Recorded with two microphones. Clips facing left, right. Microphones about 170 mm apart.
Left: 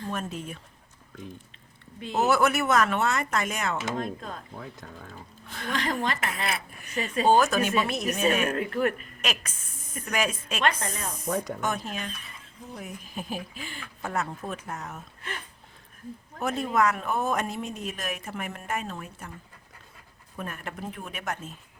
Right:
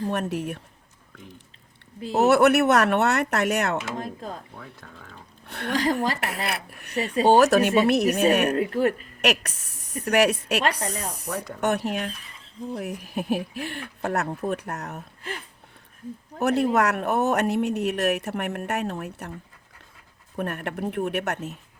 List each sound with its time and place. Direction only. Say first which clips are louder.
0.1 s speech: right 6 dB; 70° right (ahead or behind)
2.1 s speech: right 6 dB; 70° right (ahead or behind)
3.9 s speech: even; 30° right (ahead or behind)
4.5 s speech: left 2 dB; 20° left (ahead or behind)
5.5 s a woman's voice: right 4 dB; 65° right (ahead or behind)
5.7 s speech: right 5 dB; 35° right (ahead or behind)
6.1 s speech: right 2 dB; 65° right (ahead or behind)
8.5 s speech: right 4 dB; 30° right (ahead or behind)
9.2 s a woman's voice: right 9 dB; 70° right (ahead or behind)
10.6 s speech: right 2 dB; 35° right (ahead or behind)
11.1 s speech: left 2 dB; 70° right (ahead or behind)
14.9 s speech: right 4 dB; 30° right (ahead or behind)
16.4 s speech: right 4 dB; 70° right (ahead or behind)
20.3 s speech: right 7 dB; 60° right (ahead or behind)